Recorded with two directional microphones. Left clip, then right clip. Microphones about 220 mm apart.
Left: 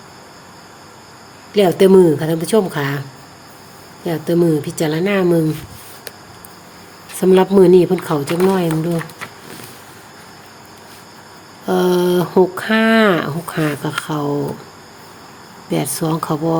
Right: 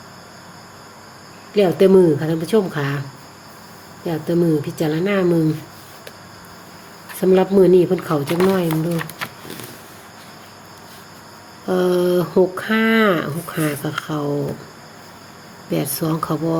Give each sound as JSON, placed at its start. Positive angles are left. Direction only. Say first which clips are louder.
{"t": 1.5, "sound": "a woman's voice", "louder": "left 3 dB", "side_deg": 20}
{"t": 4.0, "sound": "a woman's voice", "louder": "left 3 dB", "side_deg": 20}
{"t": 7.2, "sound": "a woman's voice", "louder": "left 3 dB", "side_deg": 15}
{"t": 11.6, "sound": "speech", "louder": "left 2 dB", "side_deg": 15}
{"t": 15.7, "sound": "a woman's voice", "louder": "left 2 dB", "side_deg": 15}